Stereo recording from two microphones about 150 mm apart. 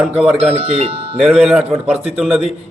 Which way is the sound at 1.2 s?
5° right (ahead or behind).